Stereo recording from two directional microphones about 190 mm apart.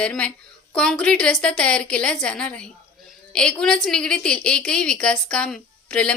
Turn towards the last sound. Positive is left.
turn(degrees=5)  # may be behind; listen again after turning